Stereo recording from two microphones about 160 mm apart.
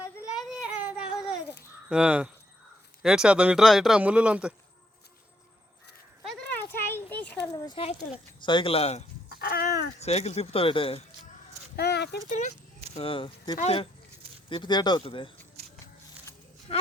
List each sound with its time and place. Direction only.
0.3 s a sound: centre (ahead or behind)
1.9 s speech: 5° right (ahead or behind)
6.2 s a sound: 10° left (ahead or behind)
7.5 s a sound: 25° left (ahead or behind)
8.4 s speech: 35° left (ahead or behind)
9.3 s cat: 80° left
10.0 s speech: 40° left (ahead or behind)
11.8 s speech: 90° left
12.3 s speech: 50° left (ahead or behind)
14.5 s speech: 30° left (ahead or behind)